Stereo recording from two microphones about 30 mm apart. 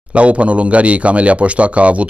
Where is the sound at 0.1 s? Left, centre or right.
Right.